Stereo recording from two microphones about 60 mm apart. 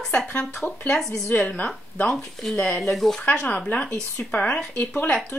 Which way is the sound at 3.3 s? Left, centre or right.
Left.